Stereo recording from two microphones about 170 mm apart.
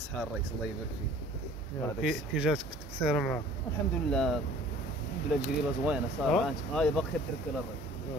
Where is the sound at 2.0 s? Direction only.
5° right (ahead or behind).